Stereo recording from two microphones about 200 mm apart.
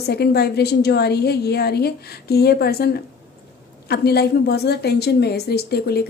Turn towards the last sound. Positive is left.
turn(degrees=55)  # may be behind; listen again after turning